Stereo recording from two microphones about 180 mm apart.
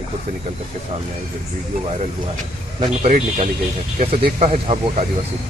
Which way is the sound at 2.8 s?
40° right (ahead or behind).